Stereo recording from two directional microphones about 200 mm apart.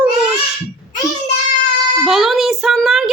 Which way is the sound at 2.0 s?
Centre (ahead or behind).